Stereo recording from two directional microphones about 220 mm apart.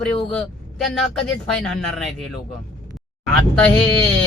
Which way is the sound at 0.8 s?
Centre (ahead or behind).